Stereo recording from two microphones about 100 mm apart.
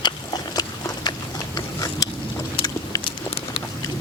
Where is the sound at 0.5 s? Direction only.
40° left (ahead or behind).